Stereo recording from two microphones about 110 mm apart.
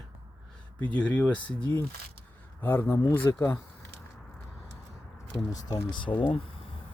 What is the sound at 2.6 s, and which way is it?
Speech, 20° left (ahead or behind).